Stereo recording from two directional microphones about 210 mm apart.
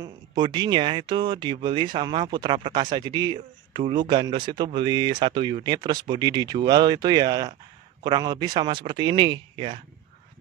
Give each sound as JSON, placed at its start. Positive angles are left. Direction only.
{"t": 0.0, "sound": "speech", "side_deg": -20}